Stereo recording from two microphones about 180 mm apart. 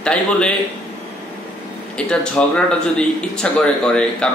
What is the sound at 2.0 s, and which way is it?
Speech, 5° left (ahead or behind).